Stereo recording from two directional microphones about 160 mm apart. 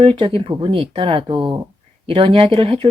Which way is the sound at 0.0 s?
35° right (ahead or behind).